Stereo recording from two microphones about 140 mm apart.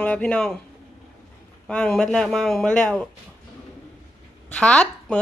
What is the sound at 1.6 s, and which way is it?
A woman's voice, 5° left (ahead or behind).